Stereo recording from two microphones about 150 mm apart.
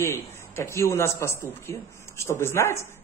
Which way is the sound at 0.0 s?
20° left (ahead or behind).